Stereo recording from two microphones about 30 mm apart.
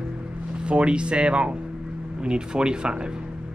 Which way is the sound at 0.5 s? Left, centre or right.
Right.